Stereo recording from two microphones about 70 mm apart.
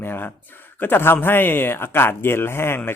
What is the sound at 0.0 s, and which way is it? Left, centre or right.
Speech, left.